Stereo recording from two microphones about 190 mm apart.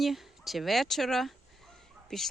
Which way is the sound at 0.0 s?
Centre (ahead or behind).